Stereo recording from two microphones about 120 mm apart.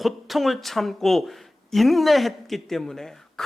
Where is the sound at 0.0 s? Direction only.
Centre (ahead or behind).